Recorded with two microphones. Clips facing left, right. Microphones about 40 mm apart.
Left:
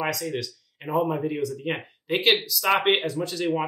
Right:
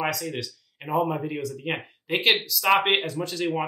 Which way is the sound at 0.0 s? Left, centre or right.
Centre.